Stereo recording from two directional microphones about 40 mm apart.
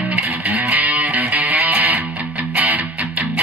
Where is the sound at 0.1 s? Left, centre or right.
Right.